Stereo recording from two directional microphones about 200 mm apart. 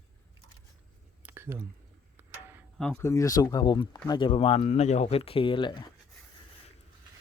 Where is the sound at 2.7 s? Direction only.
5° left (ahead or behind); by 5.8 s 25° left (ahead or behind).